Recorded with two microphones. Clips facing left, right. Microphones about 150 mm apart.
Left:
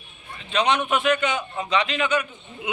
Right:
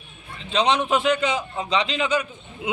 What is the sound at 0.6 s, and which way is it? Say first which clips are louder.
A man's voice: right 1 dB; 30° right (ahead or behind).